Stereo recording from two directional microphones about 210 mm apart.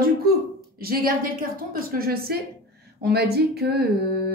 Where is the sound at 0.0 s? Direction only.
45° right (ahead or behind).